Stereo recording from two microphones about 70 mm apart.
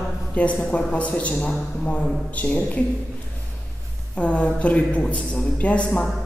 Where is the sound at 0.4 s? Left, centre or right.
Centre.